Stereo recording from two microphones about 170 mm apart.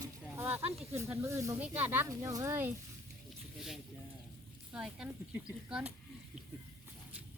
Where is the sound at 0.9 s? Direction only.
15° right (ahead or behind).